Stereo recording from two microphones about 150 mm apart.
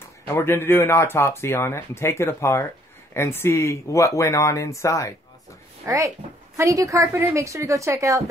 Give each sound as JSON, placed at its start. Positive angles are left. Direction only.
{"t": 0.3, "sound": "speech", "side_deg": 15}
{"t": 5.9, "sound": "a woman's voice", "side_deg": -20}